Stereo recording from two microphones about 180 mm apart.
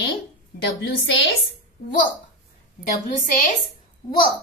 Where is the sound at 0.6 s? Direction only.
90° left.